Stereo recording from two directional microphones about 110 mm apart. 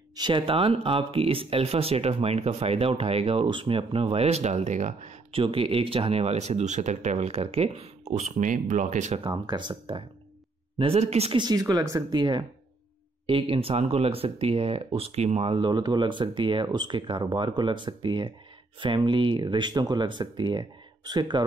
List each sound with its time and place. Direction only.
0.1 s speech: 40° right (ahead or behind)
0.5 s speech: 60° right (ahead or behind); by 5.4 s 90° right
5.4 s speech: 60° right (ahead or behind); by 9.2 s 90° right
9.3 s speech: 40° right (ahead or behind)
10.8 s speech: 70° right (ahead or behind)
11.3 s speech: 35° right (ahead or behind)
12.1 s speech: 40° right (ahead or behind)
13.3 s speech: 55° right (ahead or behind)